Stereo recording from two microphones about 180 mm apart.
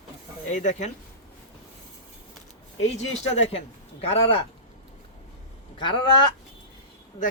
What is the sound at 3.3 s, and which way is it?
Speech, 35° left (ahead or behind).